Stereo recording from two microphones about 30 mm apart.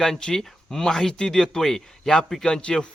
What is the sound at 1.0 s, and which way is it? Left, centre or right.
Speech, left.